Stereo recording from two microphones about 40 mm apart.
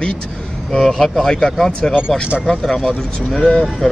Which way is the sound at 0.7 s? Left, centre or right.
Centre.